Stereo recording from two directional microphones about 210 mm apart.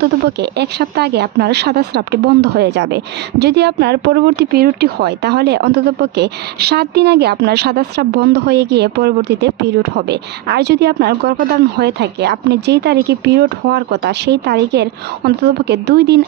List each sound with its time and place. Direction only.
0.4 s speech: 50° right (ahead or behind)